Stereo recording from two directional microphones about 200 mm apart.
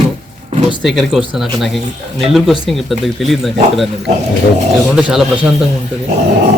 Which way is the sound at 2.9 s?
Centre (ahead or behind).